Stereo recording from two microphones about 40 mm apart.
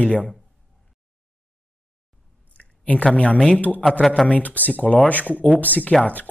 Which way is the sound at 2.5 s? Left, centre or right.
Left.